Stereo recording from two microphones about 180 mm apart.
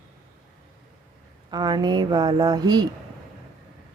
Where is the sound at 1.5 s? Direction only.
25° right (ahead or behind).